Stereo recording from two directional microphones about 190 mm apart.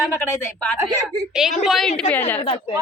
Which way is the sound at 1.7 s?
Centre (ahead or behind).